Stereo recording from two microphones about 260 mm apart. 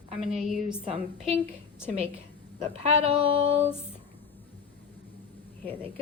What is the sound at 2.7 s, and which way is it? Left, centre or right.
Speech, right.